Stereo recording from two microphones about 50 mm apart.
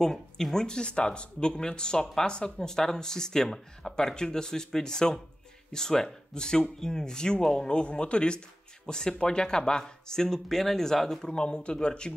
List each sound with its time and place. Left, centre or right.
0.0 s speech: centre
11.2 s speech: centre